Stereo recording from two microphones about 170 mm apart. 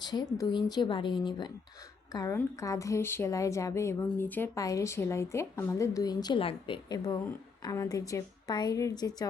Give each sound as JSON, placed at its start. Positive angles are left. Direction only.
{"t": 0.0, "sound": "a woman's voice", "side_deg": 25}